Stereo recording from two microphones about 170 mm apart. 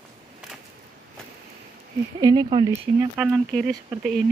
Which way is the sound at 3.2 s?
Centre (ahead or behind).